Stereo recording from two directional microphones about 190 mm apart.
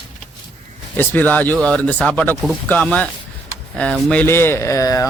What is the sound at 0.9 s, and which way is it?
Speech, 10° left (ahead or behind).